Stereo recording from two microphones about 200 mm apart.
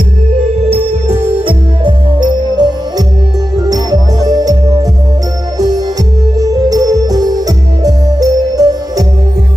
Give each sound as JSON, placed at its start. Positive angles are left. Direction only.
{"t": 0.7, "sound": "music", "side_deg": -30}
{"t": 6.3, "sound": "music", "side_deg": -20}